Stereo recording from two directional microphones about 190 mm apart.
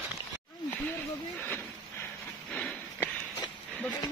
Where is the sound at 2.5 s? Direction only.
5° left (ahead or behind).